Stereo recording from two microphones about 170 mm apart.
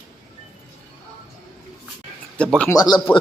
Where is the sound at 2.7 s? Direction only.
20° left (ahead or behind).